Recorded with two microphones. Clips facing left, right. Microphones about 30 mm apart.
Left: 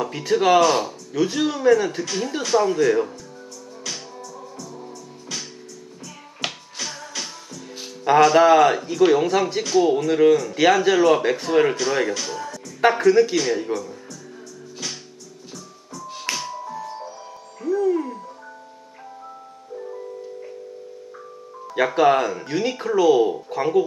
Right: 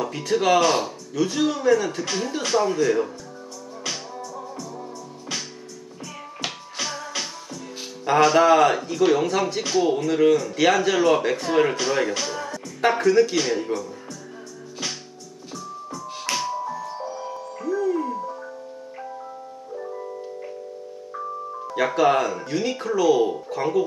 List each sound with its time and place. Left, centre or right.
0.0 s speech: centre
0.6 s speech: centre
1.1 s speech: centre
3.8 s music: centre
6.4 s music: centre
6.8 s music: centre
8.1 s a sound: centre
8.4 s speech: centre
9.6 s speech: centre
12.8 s speech: centre
15.5 s music: centre
19.9 s music: centre
21.9 s speech: centre